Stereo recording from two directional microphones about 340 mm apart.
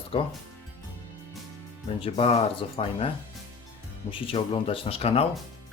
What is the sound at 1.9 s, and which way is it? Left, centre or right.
Speech, centre.